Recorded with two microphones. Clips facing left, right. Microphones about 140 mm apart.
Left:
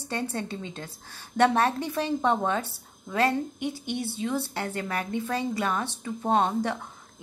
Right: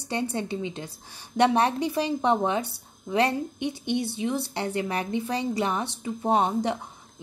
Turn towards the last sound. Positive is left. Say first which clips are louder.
# right 1 dB
turn(degrees=-15)  # may be behind; listen again after turning